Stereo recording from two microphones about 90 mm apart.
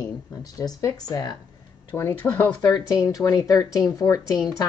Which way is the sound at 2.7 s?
45° left (ahead or behind).